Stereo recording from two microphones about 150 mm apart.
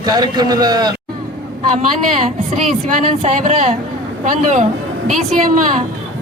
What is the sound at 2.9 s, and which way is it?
A woman's voice, 55° right (ahead or behind).